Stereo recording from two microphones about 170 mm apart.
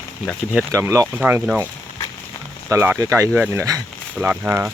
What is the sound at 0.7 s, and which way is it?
Speech, 15° right (ahead or behind).